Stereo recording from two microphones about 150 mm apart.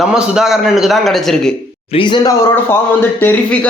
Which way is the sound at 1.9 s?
30° left (ahead or behind).